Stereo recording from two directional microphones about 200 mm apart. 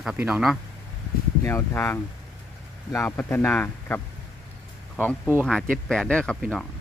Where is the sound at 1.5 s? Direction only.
10° left (ahead or behind).